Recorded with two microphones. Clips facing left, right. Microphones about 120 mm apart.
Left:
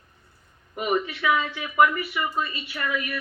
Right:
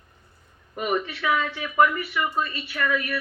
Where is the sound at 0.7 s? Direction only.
40° right (ahead or behind).